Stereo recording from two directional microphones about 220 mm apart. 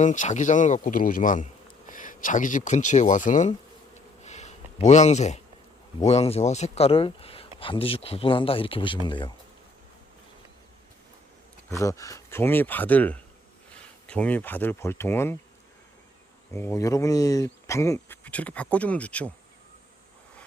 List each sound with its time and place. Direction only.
0.0 s speech: 35° left (ahead or behind)
3.9 s bee: 30° left (ahead or behind)
6.0 s speech: 30° left (ahead or behind)
11.7 s speech: 15° left (ahead or behind)
16.5 s speech: 10° left (ahead or behind)